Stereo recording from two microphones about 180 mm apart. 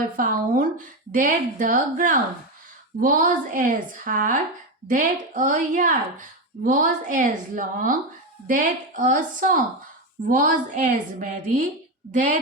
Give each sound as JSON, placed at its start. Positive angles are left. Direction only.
{"t": 0.2, "sound": "a woman's voice", "side_deg": -50}